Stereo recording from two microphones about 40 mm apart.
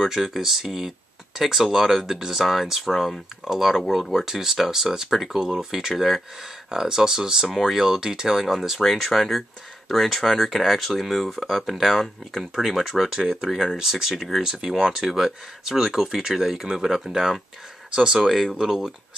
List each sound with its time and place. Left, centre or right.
0.0 s speech: centre
15.0 s speech: centre
18.2 s speech: centre
18.5 s speech: centre